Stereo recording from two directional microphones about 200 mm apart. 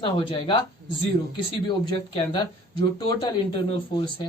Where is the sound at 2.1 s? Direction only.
25° left (ahead or behind).